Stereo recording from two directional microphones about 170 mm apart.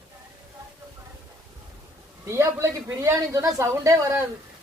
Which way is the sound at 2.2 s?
15° right (ahead or behind).